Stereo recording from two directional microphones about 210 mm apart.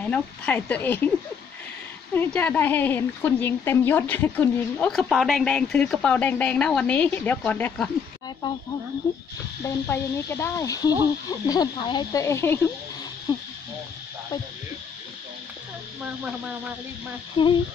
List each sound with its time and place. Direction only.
0.0 s speech: 5° left (ahead or behind)
2.1 s speech: 10° left (ahead or behind)
9.7 s speech: 10° left (ahead or behind)
17.4 s speech: 25° left (ahead or behind)